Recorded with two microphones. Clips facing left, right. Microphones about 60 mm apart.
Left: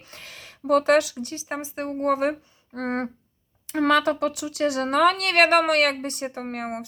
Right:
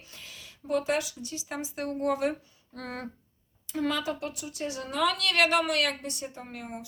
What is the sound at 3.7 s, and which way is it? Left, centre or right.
Speech, left.